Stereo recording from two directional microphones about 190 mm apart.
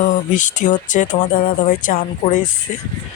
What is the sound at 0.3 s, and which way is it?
Speech, 40° left (ahead or behind).